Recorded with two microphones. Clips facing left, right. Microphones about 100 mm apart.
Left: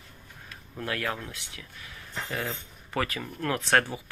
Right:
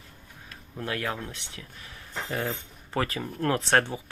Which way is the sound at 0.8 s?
25° right (ahead or behind).